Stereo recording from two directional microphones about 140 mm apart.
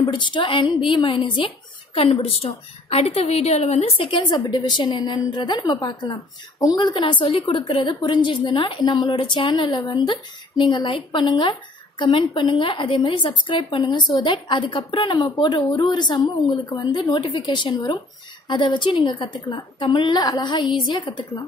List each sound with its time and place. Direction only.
0.0 s a woman's voice: 35° left (ahead or behind)